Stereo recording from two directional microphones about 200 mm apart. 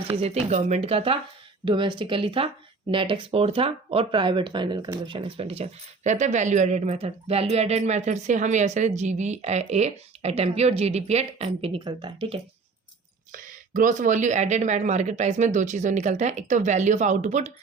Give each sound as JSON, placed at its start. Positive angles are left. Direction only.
{"t": 0.1, "sound": "speech", "side_deg": -30}
{"t": 13.3, "sound": "speech", "side_deg": -40}